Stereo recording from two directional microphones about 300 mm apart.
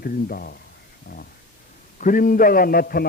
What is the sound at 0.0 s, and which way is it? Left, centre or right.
Speech, left.